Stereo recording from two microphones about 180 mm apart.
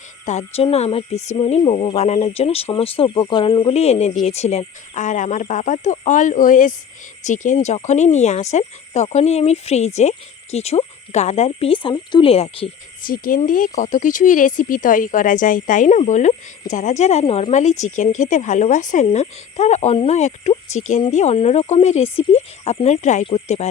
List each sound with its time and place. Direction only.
0.3 s speech: 35° left (ahead or behind)
13.1 s speech: 50° left (ahead or behind)